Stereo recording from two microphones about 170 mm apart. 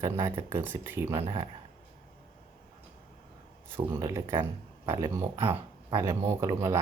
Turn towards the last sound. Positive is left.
turn(degrees=-15)  # may be behind; listen again after turning